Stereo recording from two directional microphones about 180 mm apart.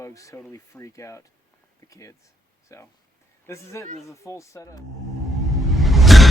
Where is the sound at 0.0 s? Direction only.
15° left (ahead or behind).